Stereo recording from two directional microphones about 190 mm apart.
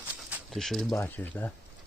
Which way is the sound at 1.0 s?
10° left (ahead or behind).